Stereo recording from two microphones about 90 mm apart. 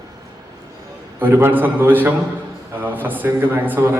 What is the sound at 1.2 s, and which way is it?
A man's voice, 25° right (ahead or behind).